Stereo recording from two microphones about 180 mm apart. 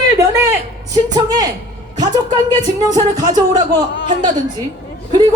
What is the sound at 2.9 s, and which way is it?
Speech, 20° right (ahead or behind).